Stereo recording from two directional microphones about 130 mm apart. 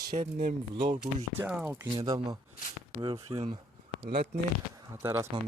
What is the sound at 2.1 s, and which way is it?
Speech, 35° right (ahead or behind).